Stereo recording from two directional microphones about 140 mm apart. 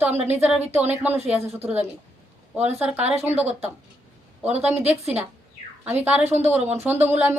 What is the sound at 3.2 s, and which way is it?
A woman's voice, 50° right (ahead or behind).